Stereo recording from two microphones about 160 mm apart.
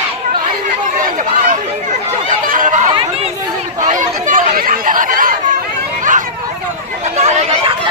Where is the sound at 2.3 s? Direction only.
55° right (ahead or behind).